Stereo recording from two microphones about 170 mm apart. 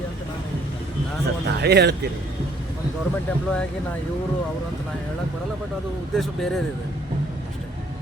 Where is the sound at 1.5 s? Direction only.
80° right.